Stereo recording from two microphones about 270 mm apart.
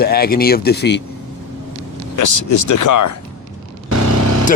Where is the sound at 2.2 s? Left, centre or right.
Left.